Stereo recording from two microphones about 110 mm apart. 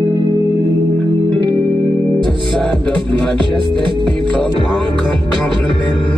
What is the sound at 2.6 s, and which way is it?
Music, 10° left (ahead or behind).